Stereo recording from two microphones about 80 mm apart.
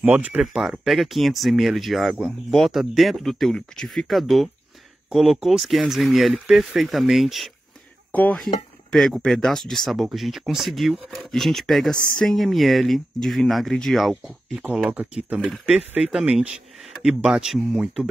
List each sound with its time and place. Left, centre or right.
0.0 s speech: centre
0.4 s speech: centre
8.1 s speech: centre
8.9 s speech: centre
14.8 s speech: centre